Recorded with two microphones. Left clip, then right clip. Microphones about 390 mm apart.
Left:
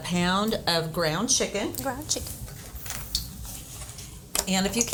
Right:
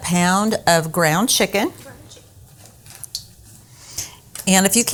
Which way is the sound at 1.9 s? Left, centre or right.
Left.